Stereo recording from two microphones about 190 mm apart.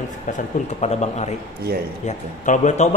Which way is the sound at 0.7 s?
35° left (ahead or behind).